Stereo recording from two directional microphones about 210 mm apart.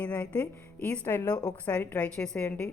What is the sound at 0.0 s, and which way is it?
A woman's voice, 5° left (ahead or behind).